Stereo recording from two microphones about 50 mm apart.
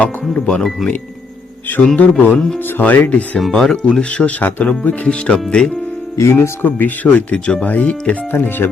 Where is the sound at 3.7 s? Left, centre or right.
Centre.